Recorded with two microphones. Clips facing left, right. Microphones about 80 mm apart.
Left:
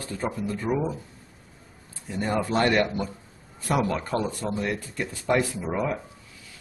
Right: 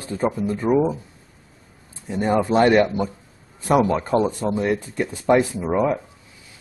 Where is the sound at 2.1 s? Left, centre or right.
Right.